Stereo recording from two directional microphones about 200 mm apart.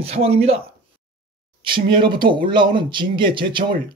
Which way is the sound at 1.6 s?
25° right (ahead or behind).